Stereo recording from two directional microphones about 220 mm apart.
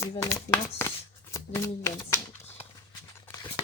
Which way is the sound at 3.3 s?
15° left (ahead or behind).